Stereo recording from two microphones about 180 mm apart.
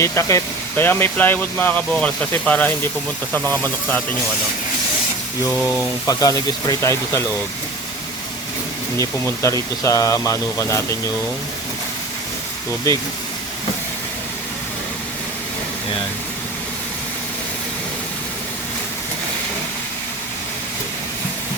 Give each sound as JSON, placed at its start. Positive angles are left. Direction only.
{"t": 0.0, "sound": "speech", "side_deg": 15}
{"t": 5.5, "sound": "speech", "side_deg": 15}
{"t": 9.0, "sound": "speech", "side_deg": 15}
{"t": 12.9, "sound": "speech", "side_deg": 15}